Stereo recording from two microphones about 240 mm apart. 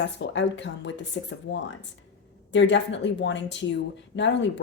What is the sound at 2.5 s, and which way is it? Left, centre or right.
A woman's voice, left.